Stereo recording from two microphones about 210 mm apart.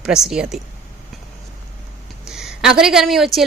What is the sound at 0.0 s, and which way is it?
Speech, centre (ahead or behind).